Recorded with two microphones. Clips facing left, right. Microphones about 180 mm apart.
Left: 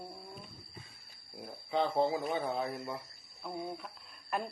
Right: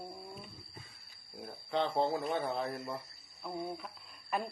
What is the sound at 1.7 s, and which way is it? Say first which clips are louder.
Speech: left 1 dB; 5° left (ahead or behind).